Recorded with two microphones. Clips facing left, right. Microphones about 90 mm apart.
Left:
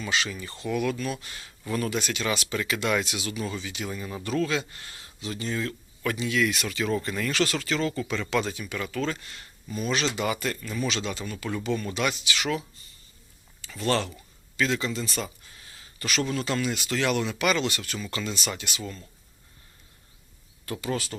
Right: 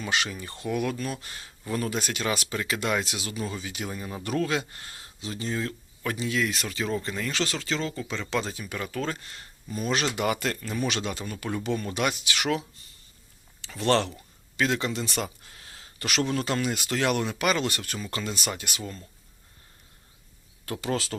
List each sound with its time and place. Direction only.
0.0 s speech: 45° right (ahead or behind); by 2.0 s 30° right (ahead or behind)
2.0 s speech: 45° right (ahead or behind)
3.8 s speech: 30° right (ahead or behind)
4.2 s speech: 50° right (ahead or behind)
13.7 s speech: 60° right (ahead or behind)
16.3 s speech: 50° right (ahead or behind)
20.8 s speech: 90° right